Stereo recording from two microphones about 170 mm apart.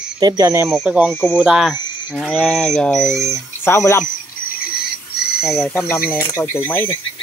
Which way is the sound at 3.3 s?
15° left (ahead or behind).